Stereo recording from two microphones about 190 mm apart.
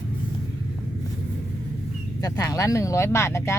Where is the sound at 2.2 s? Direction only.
20° left (ahead or behind).